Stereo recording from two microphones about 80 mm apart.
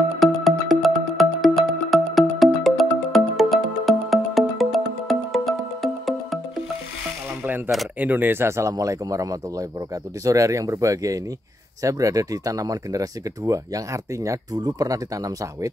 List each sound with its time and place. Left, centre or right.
0.2 s music: centre
7.4 s a sound: right
8.0 s speech: right